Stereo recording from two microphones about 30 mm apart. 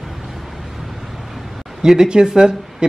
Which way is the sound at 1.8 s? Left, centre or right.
Centre.